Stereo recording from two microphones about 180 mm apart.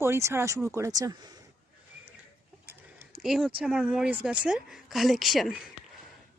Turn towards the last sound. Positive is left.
turn(degrees=0)  # may be behind; listen again after turning